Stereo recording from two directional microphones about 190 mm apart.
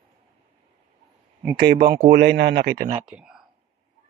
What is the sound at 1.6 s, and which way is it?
Speech, 60° right (ahead or behind).